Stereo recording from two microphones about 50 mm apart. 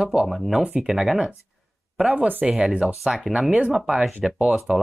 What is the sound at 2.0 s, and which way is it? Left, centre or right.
Speech, centre.